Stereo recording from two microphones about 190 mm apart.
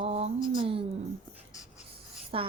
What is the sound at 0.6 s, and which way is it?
Speech, 30° right (ahead or behind).